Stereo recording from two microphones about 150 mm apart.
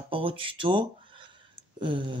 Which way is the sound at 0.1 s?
35° right (ahead or behind).